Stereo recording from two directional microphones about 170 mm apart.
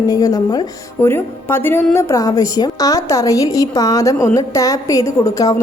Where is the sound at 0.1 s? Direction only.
20° left (ahead or behind).